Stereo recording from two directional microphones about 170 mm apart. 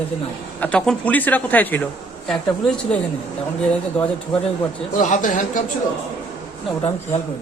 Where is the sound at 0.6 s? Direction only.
5° left (ahead or behind).